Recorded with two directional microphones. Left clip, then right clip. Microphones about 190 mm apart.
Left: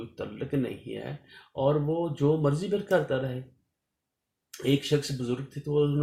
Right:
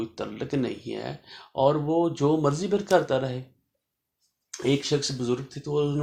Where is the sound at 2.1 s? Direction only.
30° right (ahead or behind).